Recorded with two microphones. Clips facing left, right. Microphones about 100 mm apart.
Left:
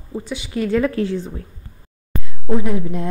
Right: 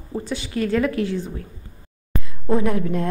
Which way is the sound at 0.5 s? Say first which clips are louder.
Left 2 dB; 20° left (ahead or behind).